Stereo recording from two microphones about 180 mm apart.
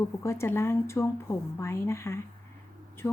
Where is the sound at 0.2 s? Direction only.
15° left (ahead or behind).